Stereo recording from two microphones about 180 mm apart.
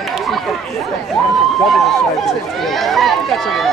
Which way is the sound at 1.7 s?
Centre (ahead or behind).